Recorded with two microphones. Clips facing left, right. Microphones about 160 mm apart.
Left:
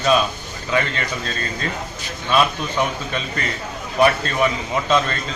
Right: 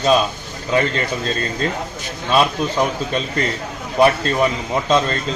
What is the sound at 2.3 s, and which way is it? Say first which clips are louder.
A man's voice: right 2 dB; 35° right (ahead or behind).